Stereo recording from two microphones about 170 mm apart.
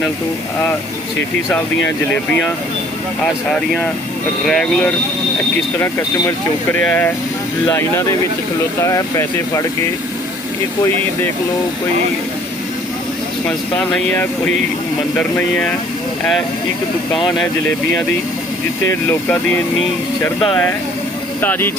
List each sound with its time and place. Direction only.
1.5 s speech: 10° left (ahead or behind)
4.4 s speech: 5° left (ahead or behind)
5.8 s speech: 15° left (ahead or behind)
13.5 s speech: 5° left (ahead or behind)
17.2 s speech: 5° left (ahead or behind)